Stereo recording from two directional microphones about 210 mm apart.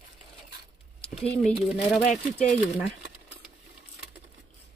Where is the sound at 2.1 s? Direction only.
35° left (ahead or behind).